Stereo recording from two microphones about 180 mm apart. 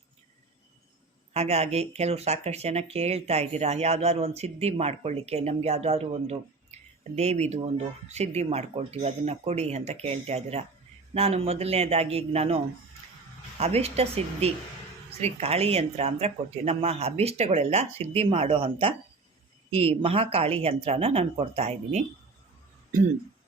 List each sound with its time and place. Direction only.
1.3 s speech: 35° right (ahead or behind)
13.6 s speech: 35° right (ahead or behind)